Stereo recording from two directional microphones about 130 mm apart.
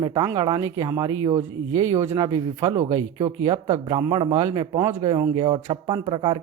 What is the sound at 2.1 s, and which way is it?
Speech, 35° right (ahead or behind).